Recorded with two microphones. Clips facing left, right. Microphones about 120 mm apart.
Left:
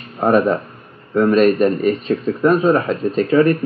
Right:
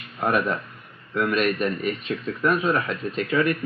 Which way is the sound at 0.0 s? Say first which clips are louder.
Left 9 dB; 35° left (ahead or behind).